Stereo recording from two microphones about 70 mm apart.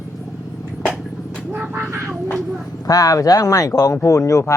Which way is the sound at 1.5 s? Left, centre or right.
Right.